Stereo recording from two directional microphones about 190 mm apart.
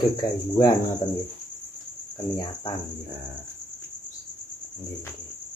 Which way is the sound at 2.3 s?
25° left (ahead or behind).